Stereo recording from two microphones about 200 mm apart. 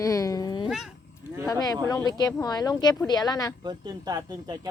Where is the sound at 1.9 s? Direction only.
20° left (ahead or behind).